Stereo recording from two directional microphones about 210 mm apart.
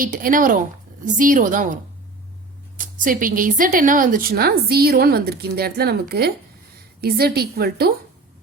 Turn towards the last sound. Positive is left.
turn(degrees=-45)  # may be behind; listen again after turning